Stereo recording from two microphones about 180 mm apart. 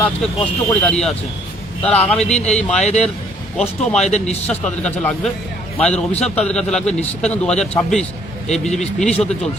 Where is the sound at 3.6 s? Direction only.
5° left (ahead or behind).